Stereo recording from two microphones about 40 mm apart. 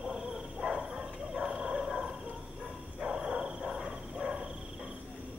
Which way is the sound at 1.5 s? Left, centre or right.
Centre.